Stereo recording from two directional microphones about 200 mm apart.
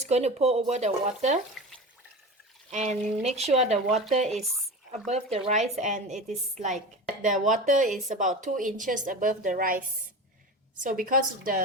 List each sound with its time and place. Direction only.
0.0 s a woman's voice: 35° right (ahead or behind)
2.7 s a woman's voice: 35° right (ahead or behind)
10.8 s a woman's voice: 45° right (ahead or behind)